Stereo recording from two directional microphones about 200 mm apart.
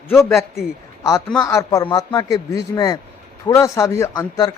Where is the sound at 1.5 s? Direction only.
15° left (ahead or behind).